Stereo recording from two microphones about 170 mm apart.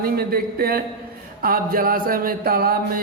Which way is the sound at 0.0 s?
60° right (ahead or behind).